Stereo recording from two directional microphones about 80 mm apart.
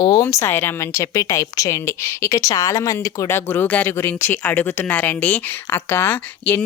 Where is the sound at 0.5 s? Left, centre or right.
Left.